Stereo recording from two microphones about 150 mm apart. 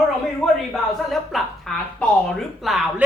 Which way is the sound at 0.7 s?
Centre (ahead or behind).